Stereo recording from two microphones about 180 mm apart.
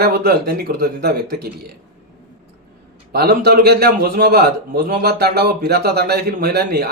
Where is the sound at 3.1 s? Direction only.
60° right (ahead or behind).